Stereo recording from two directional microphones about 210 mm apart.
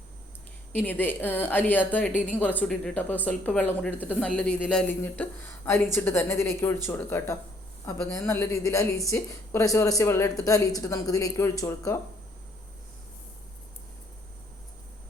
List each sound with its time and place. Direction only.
0.7 s a woman's voice: 10° left (ahead or behind)